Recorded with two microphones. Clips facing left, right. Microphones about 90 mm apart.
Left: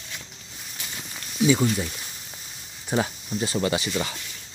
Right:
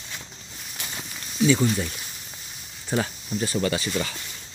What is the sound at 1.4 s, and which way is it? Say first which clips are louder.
Speech: even; 15° left (ahead or behind).